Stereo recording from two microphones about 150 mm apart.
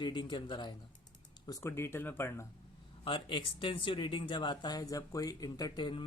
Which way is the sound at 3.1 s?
35° left (ahead or behind).